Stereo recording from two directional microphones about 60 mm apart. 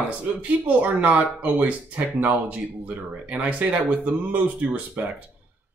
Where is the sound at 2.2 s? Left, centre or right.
Right.